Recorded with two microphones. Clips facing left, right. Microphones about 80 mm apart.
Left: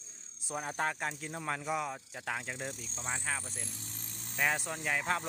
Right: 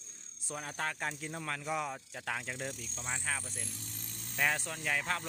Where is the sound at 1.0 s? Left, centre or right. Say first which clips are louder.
Left 1 dB; centre.